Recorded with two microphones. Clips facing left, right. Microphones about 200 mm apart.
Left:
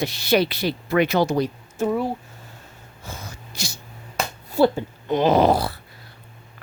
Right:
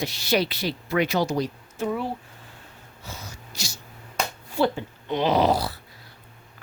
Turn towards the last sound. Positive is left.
turn(degrees=55)  # may be behind; listen again after turning